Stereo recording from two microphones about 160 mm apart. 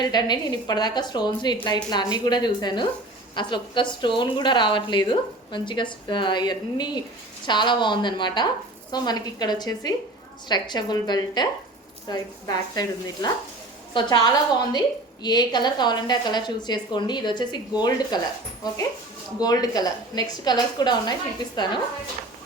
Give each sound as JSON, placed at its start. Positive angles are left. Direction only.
{"t": 0.0, "sound": "a woman's voice", "side_deg": 25}
{"t": 19.4, "sound": "a woman's voice", "side_deg": 25}